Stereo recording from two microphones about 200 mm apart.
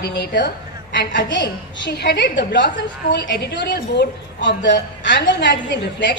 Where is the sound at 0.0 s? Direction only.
55° left (ahead or behind).